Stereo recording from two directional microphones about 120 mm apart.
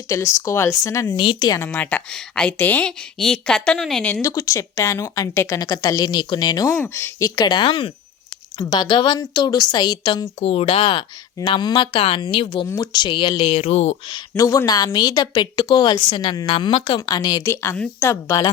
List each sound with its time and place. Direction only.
0.1 s a woman's voice: 25° left (ahead or behind)
1.2 s a woman's voice: 40° left (ahead or behind)
1.5 s a woman's voice: 15° left (ahead or behind)
4.2 s a woman's voice: 25° left (ahead or behind)
10.4 s a woman's voice: 55° left (ahead or behind)
13.5 s speech: 65° left (ahead or behind)
14.1 s a woman's voice: 30° left (ahead or behind)